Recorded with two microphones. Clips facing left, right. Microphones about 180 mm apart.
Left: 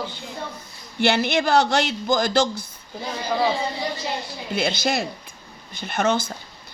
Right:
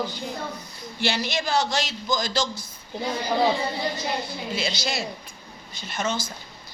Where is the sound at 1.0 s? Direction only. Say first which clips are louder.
Left 7 dB; 60° left (ahead or behind).